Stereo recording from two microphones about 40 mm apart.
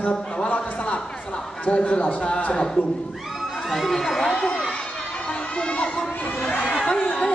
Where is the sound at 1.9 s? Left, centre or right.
Left.